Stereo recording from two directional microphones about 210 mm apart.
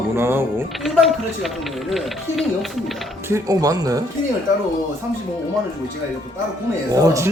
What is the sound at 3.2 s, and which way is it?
Speech, 15° right (ahead or behind).